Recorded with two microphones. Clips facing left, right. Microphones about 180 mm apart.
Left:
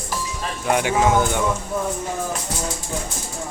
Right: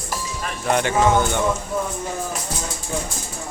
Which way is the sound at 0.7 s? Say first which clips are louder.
Even; 10° left (ahead or behind).